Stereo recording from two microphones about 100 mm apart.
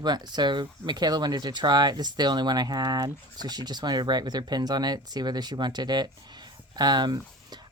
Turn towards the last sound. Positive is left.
turn(degrees=-45)  # may be behind; listen again after turning